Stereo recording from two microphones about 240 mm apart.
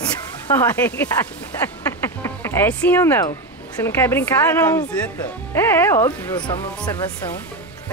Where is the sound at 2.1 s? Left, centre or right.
Centre.